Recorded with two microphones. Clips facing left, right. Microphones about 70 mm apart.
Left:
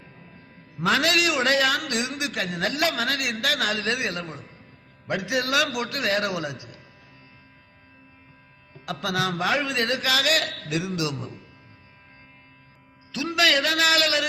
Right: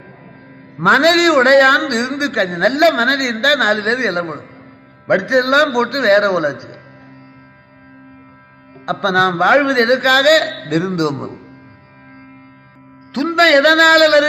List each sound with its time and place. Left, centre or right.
0.8 s a man's voice: right
8.9 s a man's voice: right
13.1 s a man's voice: right